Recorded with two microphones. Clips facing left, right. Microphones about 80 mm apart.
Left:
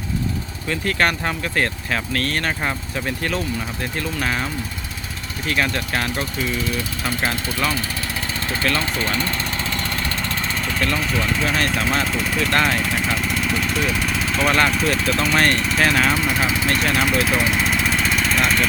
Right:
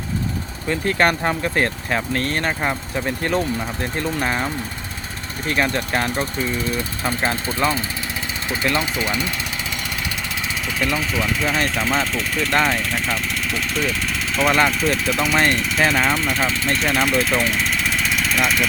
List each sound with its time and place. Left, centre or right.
0.7 s speech: right
3.9 s speech: right
5.7 s speech: right
6.4 s speech: right; by 9.3 s centre
10.8 s speech: centre